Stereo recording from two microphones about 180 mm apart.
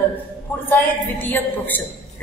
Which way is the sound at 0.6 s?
10° left (ahead or behind).